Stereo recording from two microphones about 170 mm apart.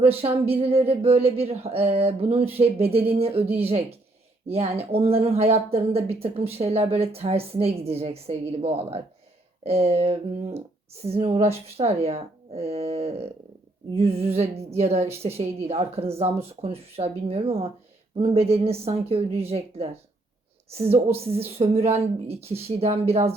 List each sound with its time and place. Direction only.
0.2 s speech: 35° right (ahead or behind)